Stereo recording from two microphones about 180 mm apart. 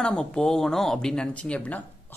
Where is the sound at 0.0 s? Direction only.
5° left (ahead or behind).